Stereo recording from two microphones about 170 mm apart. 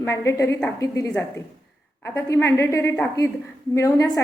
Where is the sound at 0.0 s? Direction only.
15° left (ahead or behind).